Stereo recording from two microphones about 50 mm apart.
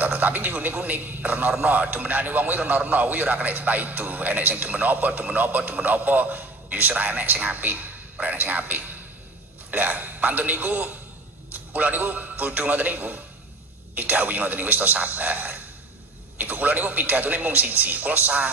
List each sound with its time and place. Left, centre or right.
0.0 s a man's voice: right